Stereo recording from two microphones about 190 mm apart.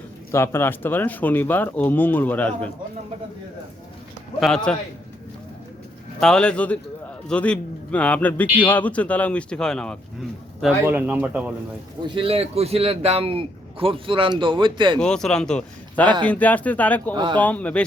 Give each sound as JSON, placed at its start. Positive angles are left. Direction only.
{"t": 0.3, "sound": "speech", "side_deg": 15}
{"t": 4.4, "sound": "speech", "side_deg": 0}
{"t": 6.1, "sound": "speech", "side_deg": 5}
{"t": 10.6, "sound": "speech", "side_deg": -5}
{"t": 12.0, "sound": "a man's voice", "side_deg": -25}
{"t": 14.9, "sound": "speech", "side_deg": 5}
{"t": 17.2, "sound": "a man's voice", "side_deg": -25}
{"t": 17.4, "sound": "speech", "side_deg": 10}